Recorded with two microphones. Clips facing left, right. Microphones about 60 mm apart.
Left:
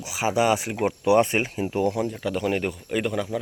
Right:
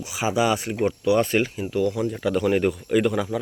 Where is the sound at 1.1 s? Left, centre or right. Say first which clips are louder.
Left 2 dB; left.